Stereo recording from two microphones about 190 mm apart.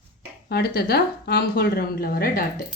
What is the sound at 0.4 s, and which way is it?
A woman's voice, 55° left (ahead or behind).